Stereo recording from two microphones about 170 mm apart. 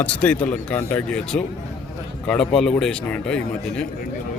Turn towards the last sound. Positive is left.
turn(degrees=5)  # may be behind; listen again after turning